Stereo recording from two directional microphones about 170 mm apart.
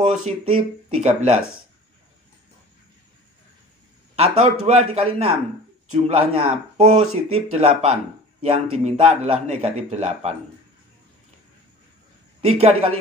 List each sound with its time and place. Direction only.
0.0 s speech: 35° right (ahead or behind)
4.1 s speech: 35° right (ahead or behind)
12.4 s speech: 35° right (ahead or behind)